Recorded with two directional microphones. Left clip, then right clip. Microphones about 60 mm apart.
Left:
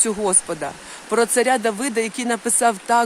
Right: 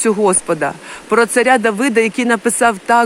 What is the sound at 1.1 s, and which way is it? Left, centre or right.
Speech, centre.